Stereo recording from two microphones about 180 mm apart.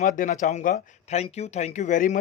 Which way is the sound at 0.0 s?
45° left (ahead or behind).